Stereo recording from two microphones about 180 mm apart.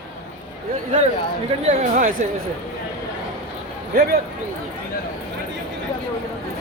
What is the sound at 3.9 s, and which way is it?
Speech, 60° right (ahead or behind).